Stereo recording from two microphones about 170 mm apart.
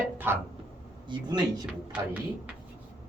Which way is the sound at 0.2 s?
10° right (ahead or behind).